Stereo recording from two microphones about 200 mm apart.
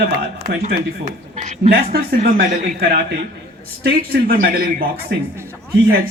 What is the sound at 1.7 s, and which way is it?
A man's voice, 50° right (ahead or behind).